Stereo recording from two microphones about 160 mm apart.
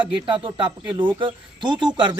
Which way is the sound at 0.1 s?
30° right (ahead or behind).